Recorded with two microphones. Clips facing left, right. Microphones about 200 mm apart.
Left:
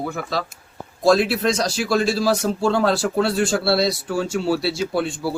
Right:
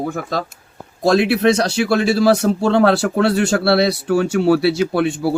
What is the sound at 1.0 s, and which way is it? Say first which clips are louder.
Speech: right 3 dB; 60° right (ahead or behind).